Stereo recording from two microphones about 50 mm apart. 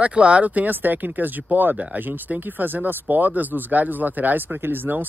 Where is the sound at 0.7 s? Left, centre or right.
Right.